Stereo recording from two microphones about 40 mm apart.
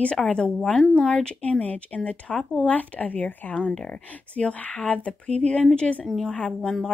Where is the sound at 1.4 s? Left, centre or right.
Left.